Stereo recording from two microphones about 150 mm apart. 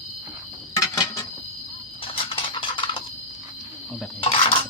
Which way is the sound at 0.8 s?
20° left (ahead or behind).